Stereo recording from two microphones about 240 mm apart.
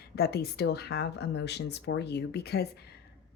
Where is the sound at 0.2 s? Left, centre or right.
Left.